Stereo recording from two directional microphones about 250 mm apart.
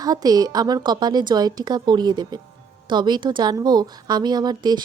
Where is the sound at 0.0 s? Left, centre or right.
Centre.